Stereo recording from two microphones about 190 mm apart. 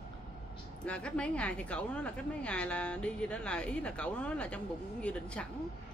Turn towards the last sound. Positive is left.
turn(degrees=5)  # may be behind; listen again after turning